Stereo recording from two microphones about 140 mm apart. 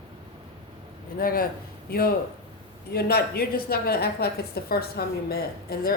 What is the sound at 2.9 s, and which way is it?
A woman's voice, 90° left.